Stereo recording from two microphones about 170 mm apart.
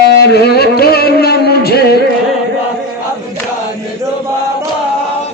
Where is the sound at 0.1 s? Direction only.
70° left (ahead or behind).